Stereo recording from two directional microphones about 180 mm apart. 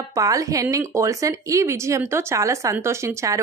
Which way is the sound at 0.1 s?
20° right (ahead or behind).